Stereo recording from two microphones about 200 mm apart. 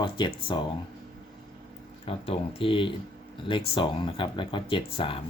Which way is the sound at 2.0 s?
30° left (ahead or behind).